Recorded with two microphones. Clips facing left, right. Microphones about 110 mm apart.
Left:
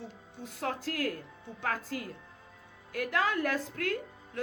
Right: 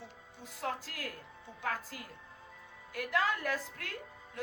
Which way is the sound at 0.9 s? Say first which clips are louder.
Left 11 dB; 50° left (ahead or behind).